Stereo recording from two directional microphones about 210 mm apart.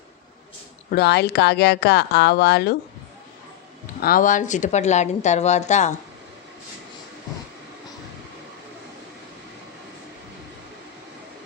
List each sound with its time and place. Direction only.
0.9 s speech: 50° left (ahead or behind)
4.0 s speech: 40° left (ahead or behind)